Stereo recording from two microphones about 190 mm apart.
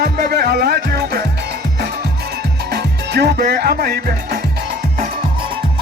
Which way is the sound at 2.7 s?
60° right (ahead or behind).